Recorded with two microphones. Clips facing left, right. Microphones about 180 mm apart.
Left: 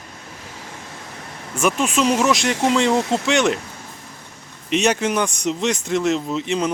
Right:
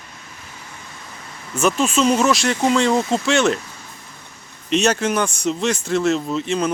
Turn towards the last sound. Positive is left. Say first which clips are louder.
# right 1 dB
turn(degrees=20)  # may be behind; listen again after turning